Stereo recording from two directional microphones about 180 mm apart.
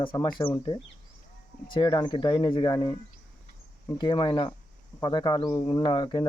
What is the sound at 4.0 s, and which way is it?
Speech, 25° left (ahead or behind).